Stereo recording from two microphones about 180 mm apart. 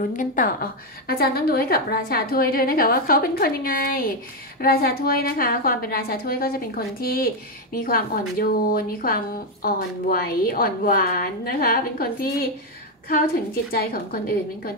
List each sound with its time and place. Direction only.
0.1 s a woman's voice: 50° left (ahead or behind)